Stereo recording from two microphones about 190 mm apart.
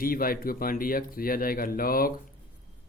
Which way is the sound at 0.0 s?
50° left (ahead or behind).